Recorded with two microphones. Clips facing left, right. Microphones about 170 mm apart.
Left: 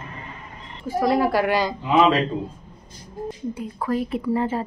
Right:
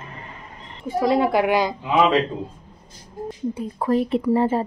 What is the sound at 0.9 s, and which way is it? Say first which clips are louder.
Speech: right 1 dB; 20° right (ahead or behind).